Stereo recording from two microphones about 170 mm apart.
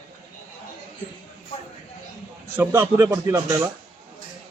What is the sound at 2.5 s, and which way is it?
Speech, 15° right (ahead or behind).